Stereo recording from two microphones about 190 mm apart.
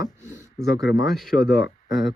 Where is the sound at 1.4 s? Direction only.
60° left (ahead or behind).